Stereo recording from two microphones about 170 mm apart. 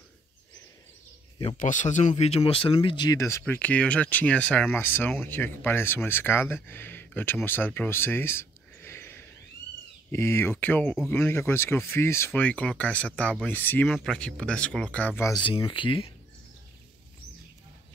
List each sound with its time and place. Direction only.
1.6 s speech: 45° left (ahead or behind); by 15.4 s 15° left (ahead or behind)
15.4 s speech: 30° left (ahead or behind)